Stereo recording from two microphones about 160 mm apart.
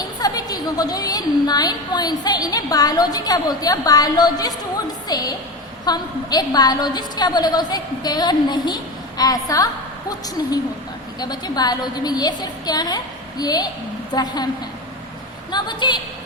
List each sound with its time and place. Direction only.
0.0 s a woman's voice: 25° left (ahead or behind)
15.5 s a woman's voice: 30° left (ahead or behind)